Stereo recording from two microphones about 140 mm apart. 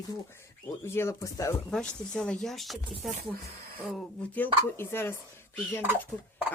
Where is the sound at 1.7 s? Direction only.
5° left (ahead or behind).